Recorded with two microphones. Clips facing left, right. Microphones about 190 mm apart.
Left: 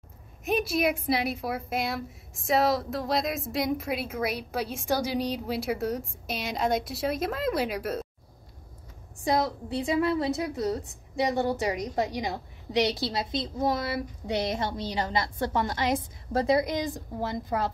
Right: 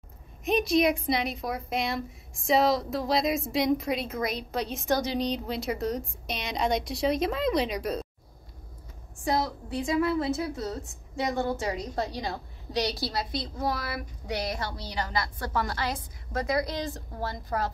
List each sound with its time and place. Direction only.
0.5 s a woman's voice: 5° left (ahead or behind)
9.7 s a woman's voice: 25° left (ahead or behind)
10.4 s a woman's voice: 15° left (ahead or behind)
16.3 s a woman's voice: 30° left (ahead or behind)
16.6 s a woman's voice: 15° left (ahead or behind)